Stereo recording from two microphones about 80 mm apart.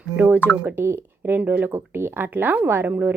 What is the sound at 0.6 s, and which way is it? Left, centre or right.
Speech, right.